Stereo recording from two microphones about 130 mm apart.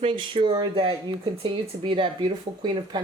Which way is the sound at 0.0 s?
40° right (ahead or behind).